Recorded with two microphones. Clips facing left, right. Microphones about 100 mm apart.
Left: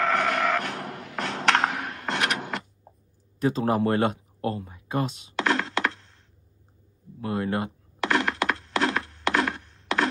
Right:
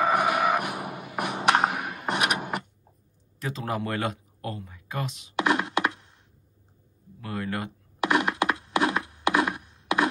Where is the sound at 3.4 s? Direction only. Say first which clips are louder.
Left 7 dB; 30° left (ahead or behind).